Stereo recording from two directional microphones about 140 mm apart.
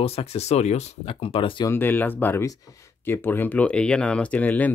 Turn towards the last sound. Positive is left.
turn(degrees=10)  # may be behind; listen again after turning